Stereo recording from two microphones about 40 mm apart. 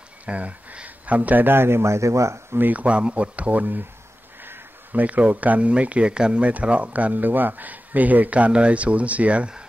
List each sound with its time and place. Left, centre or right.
0.2 s speech: right
1.4 s speech: right
2.7 s speech: right
4.4 s a sound: right
5.0 s speech: right
6.1 s speech: right
6.4 s speech: right